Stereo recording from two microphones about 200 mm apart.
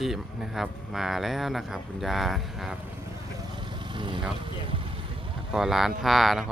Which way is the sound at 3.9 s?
25° right (ahead or behind).